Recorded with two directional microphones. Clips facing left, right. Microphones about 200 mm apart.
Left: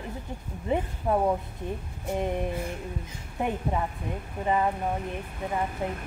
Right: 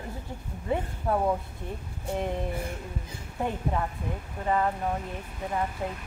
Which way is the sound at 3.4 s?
20° left (ahead or behind).